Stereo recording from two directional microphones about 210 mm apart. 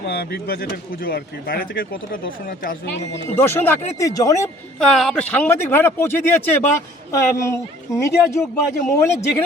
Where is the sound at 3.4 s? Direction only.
10° left (ahead or behind).